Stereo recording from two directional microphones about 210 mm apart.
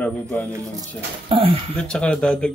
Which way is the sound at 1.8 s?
5° left (ahead or behind).